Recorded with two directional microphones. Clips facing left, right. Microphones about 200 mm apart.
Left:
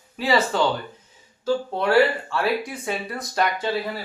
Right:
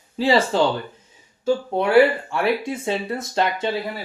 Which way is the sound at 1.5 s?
15° right (ahead or behind).